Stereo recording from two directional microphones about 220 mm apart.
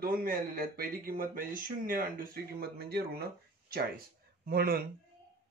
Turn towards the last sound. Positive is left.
turn(degrees=-45)  # may be behind; listen again after turning